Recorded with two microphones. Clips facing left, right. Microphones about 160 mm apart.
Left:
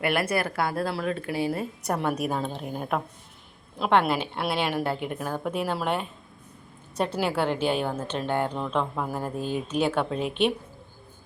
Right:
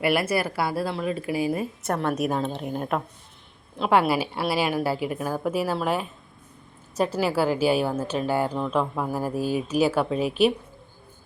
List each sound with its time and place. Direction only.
0.0 s a woman's voice: 5° right (ahead or behind)
1.9 s a woman's voice: 5° left (ahead or behind)